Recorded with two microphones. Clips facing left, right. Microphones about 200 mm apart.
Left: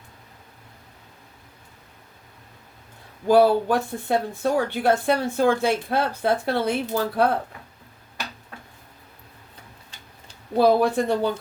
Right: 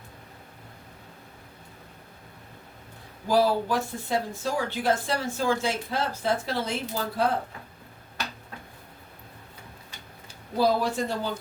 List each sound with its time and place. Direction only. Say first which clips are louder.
3.2 s speech: left 6 dB; 60° left (ahead or behind)
10.6 s speech: left 6 dB; 55° left (ahead or behind)